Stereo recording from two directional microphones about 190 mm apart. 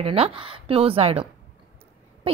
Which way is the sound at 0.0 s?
30° right (ahead or behind).